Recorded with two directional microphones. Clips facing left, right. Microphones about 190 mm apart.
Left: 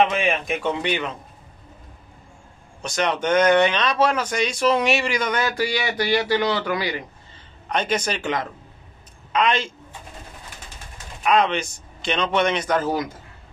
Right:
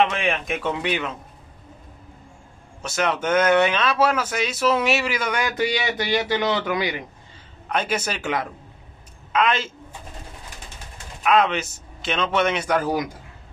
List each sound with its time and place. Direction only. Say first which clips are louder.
0.0 s speech: left 1 dB; centre (ahead or behind)
2.8 s speech: left 1 dB; 5° right (ahead or behind)
5.6 s speech: even; 20° right (ahead or behind)
7.6 s a man's voice: left 1 dB; 5° right (ahead or behind)
11.2 s speech: even; 5° right (ahead or behind)